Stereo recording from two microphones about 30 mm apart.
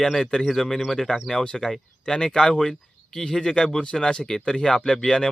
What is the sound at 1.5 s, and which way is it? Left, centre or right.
Speech, centre.